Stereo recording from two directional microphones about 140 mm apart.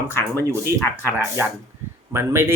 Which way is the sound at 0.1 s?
15° left (ahead or behind).